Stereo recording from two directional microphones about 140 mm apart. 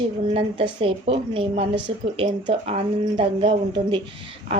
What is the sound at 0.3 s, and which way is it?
Speech, 40° right (ahead or behind).